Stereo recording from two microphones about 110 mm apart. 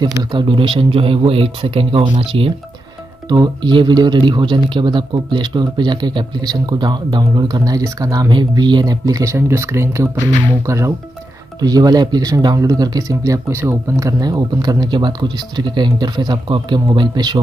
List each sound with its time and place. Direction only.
0.0 s speech: 40° right (ahead or behind); by 2.5 s 60° right (ahead or behind)
3.3 s speech: 40° right (ahead or behind)